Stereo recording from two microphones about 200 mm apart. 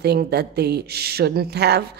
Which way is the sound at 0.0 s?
55° right (ahead or behind).